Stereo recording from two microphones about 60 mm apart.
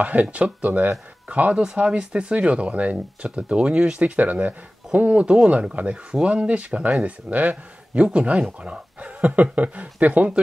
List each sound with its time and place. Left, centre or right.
0.0 s speech: right